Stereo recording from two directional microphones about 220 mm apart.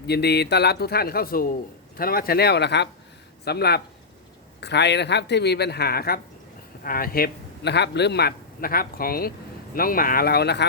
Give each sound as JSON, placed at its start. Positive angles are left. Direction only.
{"t": 0.1, "sound": "a man's voice", "side_deg": 50}